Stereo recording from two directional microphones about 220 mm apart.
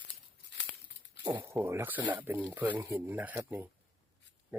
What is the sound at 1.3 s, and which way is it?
Speech, 15° right (ahead or behind).